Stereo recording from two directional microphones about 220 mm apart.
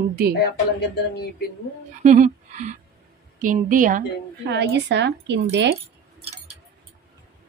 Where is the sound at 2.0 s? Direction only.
30° right (ahead or behind).